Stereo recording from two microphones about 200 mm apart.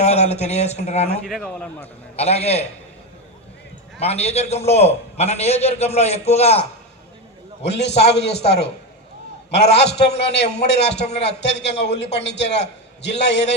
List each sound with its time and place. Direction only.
0.0 s a man's voice: 30° left (ahead or behind)
1.2 s a man's voice: 5° left (ahead or behind)
2.1 s a man's voice: 30° left (ahead or behind)
4.0 s a man's voice: 30° left (ahead or behind)
7.6 s a man's voice: 60° left (ahead or behind)
9.8 s a man's voice: 55° left (ahead or behind)